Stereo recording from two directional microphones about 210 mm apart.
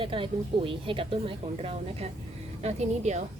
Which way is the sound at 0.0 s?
25° right (ahead or behind).